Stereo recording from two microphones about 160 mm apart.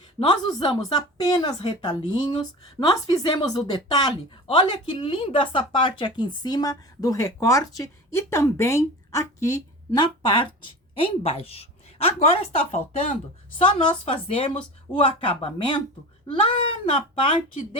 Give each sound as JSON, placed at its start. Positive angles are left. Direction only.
{"t": 0.2, "sound": "speech", "side_deg": 30}